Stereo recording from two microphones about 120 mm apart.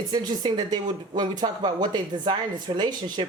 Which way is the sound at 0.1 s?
35° right (ahead or behind).